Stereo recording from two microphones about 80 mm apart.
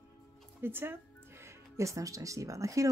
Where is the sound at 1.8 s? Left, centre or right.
Right.